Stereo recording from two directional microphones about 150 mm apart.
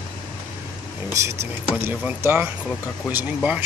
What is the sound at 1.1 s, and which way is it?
Speech, 20° right (ahead or behind).